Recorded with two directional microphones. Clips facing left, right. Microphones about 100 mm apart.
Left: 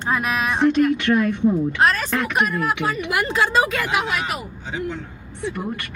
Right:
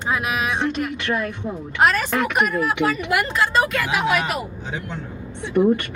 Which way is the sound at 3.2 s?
5° left (ahead or behind).